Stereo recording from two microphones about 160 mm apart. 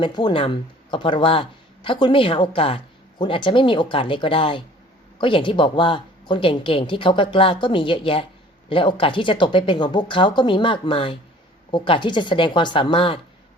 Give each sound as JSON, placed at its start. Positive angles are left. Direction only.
{"t": 0.0, "sound": "speech", "side_deg": 25}